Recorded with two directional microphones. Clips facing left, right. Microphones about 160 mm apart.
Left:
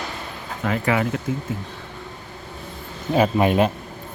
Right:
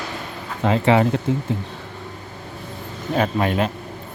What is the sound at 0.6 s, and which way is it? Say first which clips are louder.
Speech: right 5 dB; 25° right (ahead or behind).